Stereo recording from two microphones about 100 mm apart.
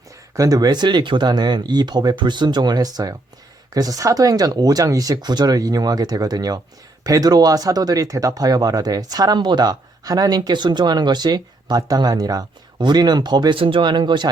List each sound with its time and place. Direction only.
0.3 s speech: 35° right (ahead or behind)
13.6 s speech: 60° right (ahead or behind)